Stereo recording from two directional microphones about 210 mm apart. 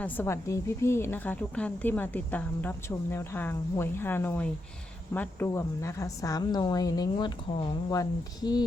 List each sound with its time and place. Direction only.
0.0 s a woman's voice: 10° left (ahead or behind)